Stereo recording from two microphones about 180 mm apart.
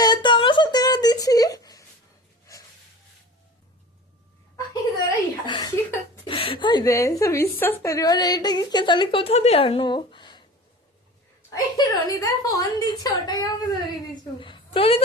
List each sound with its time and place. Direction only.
0.0 s a sound: 25° left (ahead or behind)
2.5 s snort: 15° left (ahead or behind)
4.5 s chuckle: 20° left (ahead or behind)
6.2 s a woman's voice: 30° left (ahead or behind)
11.5 s a woman's voice: 20° left (ahead or behind)